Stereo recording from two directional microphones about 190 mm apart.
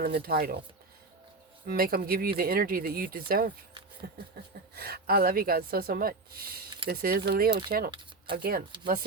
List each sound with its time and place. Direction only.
0.0 s speech: 55° right (ahead or behind)
1.6 s speech: 50° right (ahead or behind)